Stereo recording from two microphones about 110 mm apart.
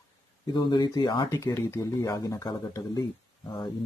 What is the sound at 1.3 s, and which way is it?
Speech, 25° left (ahead or behind).